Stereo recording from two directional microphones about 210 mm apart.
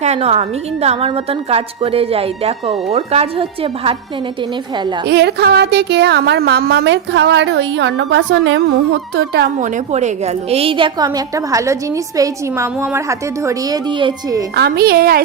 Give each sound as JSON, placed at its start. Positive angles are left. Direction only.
{"t": 0.0, "sound": "a woman's voice", "side_deg": -30}
{"t": 5.0, "sound": "a sound", "side_deg": -55}
{"t": 9.6, "sound": "a woman's voice", "side_deg": -35}
{"t": 14.5, "sound": "a woman's voice", "side_deg": -50}